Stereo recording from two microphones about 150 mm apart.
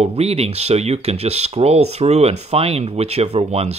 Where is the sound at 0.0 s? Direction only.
40° right (ahead or behind).